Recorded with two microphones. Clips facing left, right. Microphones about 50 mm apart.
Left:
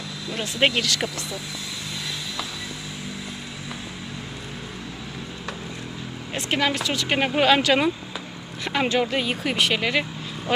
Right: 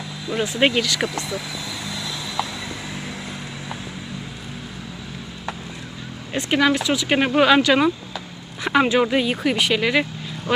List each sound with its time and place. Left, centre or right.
0.3 s speech: centre
6.3 s speech: centre